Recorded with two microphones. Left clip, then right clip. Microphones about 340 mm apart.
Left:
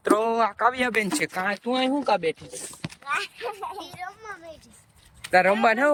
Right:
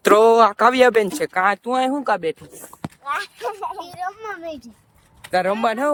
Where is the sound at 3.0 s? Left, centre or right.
Centre.